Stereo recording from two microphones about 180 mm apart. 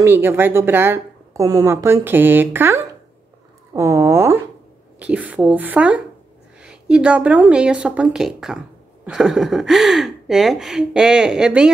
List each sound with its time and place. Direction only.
0.0 s a woman's voice: 10° right (ahead or behind)